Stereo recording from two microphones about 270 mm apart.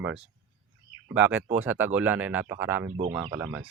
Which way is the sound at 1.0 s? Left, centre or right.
Centre.